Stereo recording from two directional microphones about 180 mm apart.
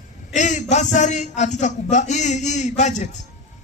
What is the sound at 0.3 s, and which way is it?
Speech, 40° left (ahead or behind).